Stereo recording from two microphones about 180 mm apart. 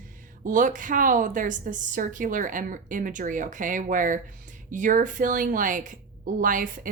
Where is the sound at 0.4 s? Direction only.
45° right (ahead or behind).